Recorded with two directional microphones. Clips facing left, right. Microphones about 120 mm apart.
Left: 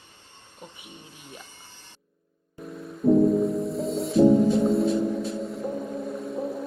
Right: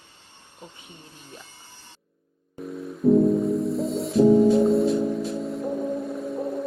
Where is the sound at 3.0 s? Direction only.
Centre (ahead or behind).